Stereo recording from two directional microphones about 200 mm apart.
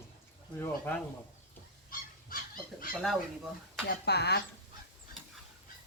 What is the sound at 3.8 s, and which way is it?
Speech, 55° left (ahead or behind).